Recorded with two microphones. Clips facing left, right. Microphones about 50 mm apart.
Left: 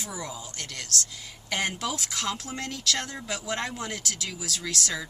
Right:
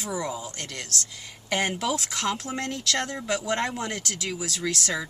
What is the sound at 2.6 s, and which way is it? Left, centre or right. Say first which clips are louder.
Speech: right 3 dB; right.